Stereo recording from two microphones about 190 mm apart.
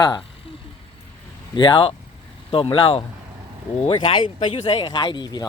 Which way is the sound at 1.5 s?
25° left (ahead or behind).